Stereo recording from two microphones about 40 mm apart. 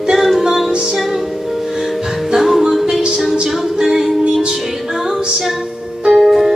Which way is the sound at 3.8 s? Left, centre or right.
Centre.